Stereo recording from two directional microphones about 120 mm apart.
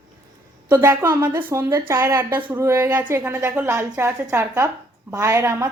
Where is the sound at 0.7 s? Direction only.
15° right (ahead or behind).